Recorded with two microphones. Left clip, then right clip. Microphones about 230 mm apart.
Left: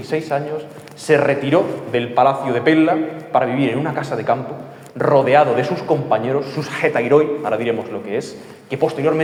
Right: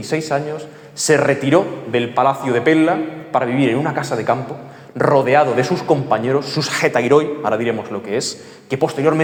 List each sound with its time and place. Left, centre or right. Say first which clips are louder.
0.1 s a man's voice: right 1 dB; right